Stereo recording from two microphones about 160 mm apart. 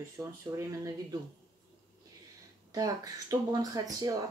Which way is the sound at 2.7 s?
20° right (ahead or behind).